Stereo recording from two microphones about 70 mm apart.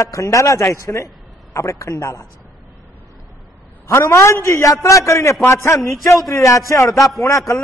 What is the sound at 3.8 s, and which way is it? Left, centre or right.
A man's voice, left.